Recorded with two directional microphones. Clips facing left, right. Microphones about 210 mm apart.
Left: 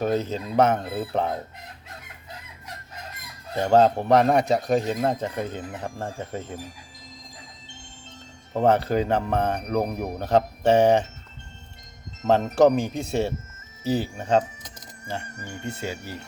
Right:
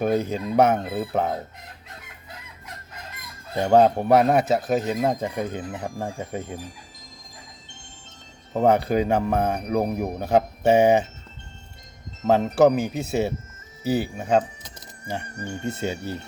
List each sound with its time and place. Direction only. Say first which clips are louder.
0.0 s speech: right 2 dB; 10° right (ahead or behind)
3.5 s speech: right 1 dB; 10° right (ahead or behind)
8.5 s speech: right 1 dB; 10° right (ahead or behind)
9.8 s speech: right 3 dB; 25° right (ahead or behind)
10.2 s speech: even; 10° right (ahead or behind)
12.2 s speech: right 1 dB; 5° right (ahead or behind)
15.3 s speech: right 5 dB; 30° right (ahead or behind)
15.6 s speech: right 4 dB; 20° right (ahead or behind)